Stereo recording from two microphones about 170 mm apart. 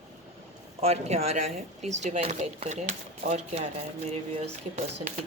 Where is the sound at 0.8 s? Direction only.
40° right (ahead or behind).